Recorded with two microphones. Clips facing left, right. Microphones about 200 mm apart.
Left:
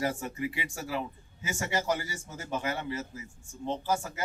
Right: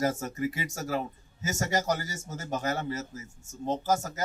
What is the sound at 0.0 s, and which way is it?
A man's voice, 40° right (ahead or behind).